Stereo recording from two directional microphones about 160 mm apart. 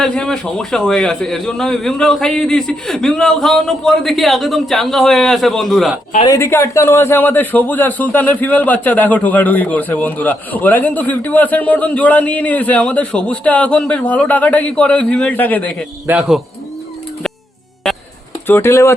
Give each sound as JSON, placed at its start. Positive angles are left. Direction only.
{"t": 0.0, "sound": "a man's voice", "side_deg": 5}
{"t": 6.2, "sound": "a man's voice", "side_deg": 20}
{"t": 16.0, "sound": "a man's voice", "side_deg": -5}
{"t": 18.4, "sound": "a man's voice", "side_deg": 15}